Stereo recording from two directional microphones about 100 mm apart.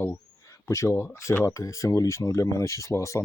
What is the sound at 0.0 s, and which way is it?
Speech, 25° left (ahead or behind).